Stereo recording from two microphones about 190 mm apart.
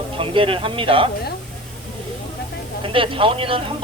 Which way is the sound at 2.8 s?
25° right (ahead or behind).